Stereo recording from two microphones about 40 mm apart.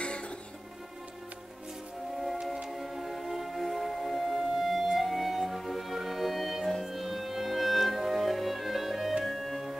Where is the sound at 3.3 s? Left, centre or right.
Centre.